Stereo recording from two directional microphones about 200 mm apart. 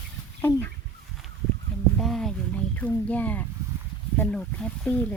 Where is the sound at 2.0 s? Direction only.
Centre (ahead or behind).